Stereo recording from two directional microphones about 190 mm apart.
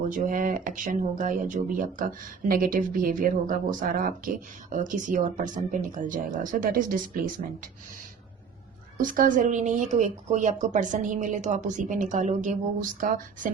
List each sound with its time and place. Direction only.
0.1 s speech: 45° right (ahead or behind)
9.0 s speech: 45° right (ahead or behind)